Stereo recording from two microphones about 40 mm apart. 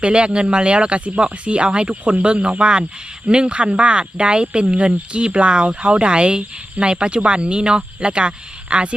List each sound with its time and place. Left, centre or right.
0.0 s speech: right